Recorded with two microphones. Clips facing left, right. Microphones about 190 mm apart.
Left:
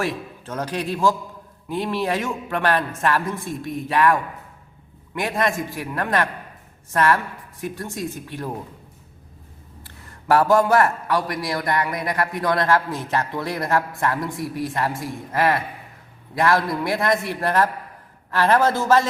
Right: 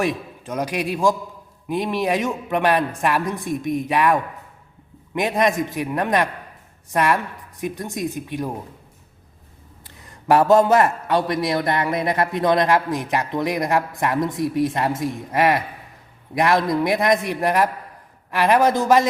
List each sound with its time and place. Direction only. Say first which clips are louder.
0.0 s a man's voice: right 3 dB; 15° right (ahead or behind)
9.8 s a man's voice: right 3 dB; 20° right (ahead or behind)